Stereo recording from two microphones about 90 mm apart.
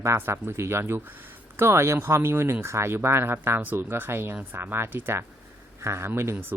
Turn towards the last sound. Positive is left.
turn(degrees=-25)  # may be behind; listen again after turning